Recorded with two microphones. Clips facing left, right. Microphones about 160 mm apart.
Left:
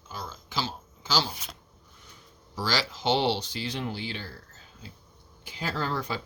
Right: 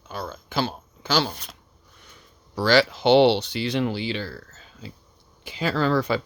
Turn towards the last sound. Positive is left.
turn(degrees=-75)  # may be behind; listen again after turning